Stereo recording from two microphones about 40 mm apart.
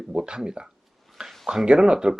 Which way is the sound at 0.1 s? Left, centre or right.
Right.